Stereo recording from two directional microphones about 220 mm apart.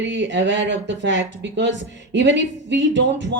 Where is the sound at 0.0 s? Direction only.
55° right (ahead or behind).